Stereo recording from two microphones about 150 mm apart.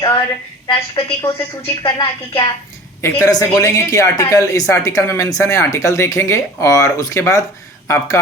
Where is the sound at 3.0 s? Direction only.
20° left (ahead or behind).